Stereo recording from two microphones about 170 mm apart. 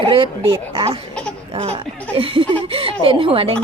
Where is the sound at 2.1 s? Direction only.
30° right (ahead or behind).